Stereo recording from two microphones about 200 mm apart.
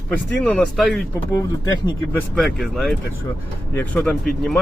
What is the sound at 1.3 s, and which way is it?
Speech, 20° left (ahead or behind).